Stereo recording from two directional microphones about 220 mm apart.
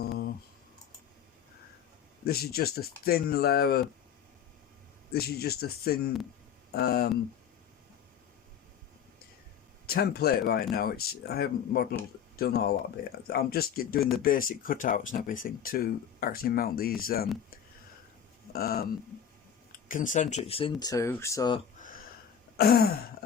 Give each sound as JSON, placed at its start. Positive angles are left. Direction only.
{"t": 0.0, "sound": "a sound", "side_deg": 45}
{"t": 2.2, "sound": "speech", "side_deg": 45}
{"t": 5.1, "sound": "speech", "side_deg": 45}
{"t": 9.8, "sound": "speech", "side_deg": 45}
{"t": 18.5, "sound": "speech", "side_deg": 45}
{"t": 19.9, "sound": "speech", "side_deg": 35}
{"t": 21.8, "sound": "a sound", "side_deg": 35}
{"t": 22.5, "sound": "speech", "side_deg": 45}